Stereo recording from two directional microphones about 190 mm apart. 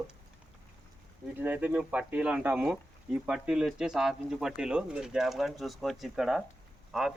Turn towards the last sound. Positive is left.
turn(degrees=0)  # may be behind; listen again after turning